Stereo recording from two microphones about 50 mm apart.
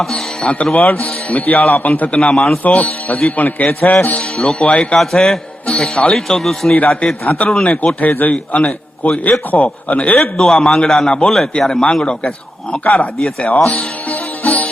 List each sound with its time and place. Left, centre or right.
0.4 s a man's voice: left
2.1 s a man's voice: left
4.4 s a man's voice: centre
4.9 s a man's voice: centre
5.7 s a man's voice: left
6.1 s a man's voice: centre
7.3 s a man's voice: left
10.3 s a man's voice: centre
12.8 s a man's voice: left
13.7 s music: left